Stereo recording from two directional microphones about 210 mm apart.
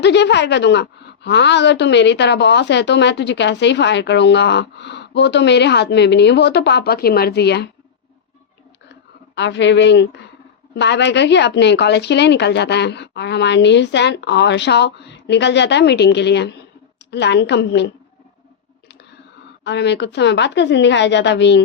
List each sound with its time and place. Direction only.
0.0 s a woman's voice: 55° left (ahead or behind)
9.3 s a woman's voice: 55° left (ahead or behind)
19.6 s a woman's voice: 55° left (ahead or behind)